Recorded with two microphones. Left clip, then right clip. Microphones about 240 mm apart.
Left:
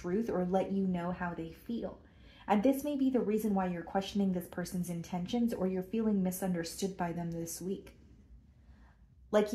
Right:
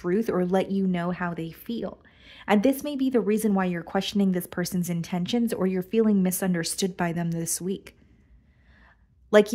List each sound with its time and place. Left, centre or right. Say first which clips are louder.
0.0 s speech: right 9 dB; right